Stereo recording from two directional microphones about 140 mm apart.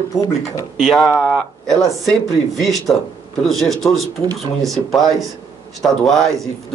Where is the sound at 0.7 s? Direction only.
Centre (ahead or behind).